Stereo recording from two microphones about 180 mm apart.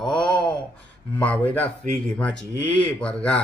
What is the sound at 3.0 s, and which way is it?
Speech, 5° left (ahead or behind).